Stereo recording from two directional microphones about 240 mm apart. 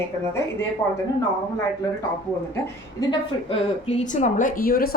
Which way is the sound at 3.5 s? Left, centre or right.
Left.